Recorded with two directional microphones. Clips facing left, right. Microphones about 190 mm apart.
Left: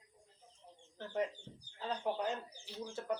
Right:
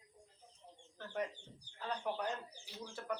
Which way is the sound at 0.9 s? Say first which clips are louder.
Left 4 dB; 20° left (ahead or behind).